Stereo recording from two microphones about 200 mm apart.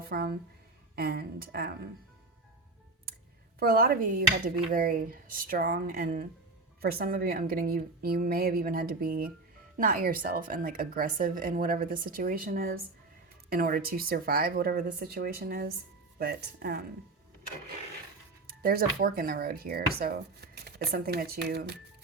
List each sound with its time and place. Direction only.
0.0 s speech: 50° right (ahead or behind)
3.6 s speech: 50° right (ahead or behind)
18.4 s speech: 50° right (ahead or behind)